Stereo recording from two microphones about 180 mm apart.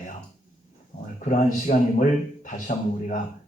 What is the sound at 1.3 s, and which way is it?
Speech, 45° left (ahead or behind).